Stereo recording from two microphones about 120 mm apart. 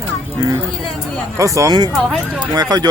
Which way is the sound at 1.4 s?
25° right (ahead or behind).